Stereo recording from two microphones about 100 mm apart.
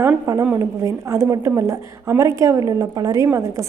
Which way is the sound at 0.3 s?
35° right (ahead or behind).